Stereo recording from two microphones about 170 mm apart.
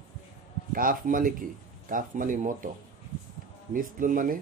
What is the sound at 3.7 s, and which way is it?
Speech, 50° right (ahead or behind).